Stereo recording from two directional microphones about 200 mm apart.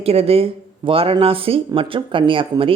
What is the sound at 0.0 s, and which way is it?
Speech, 30° right (ahead or behind).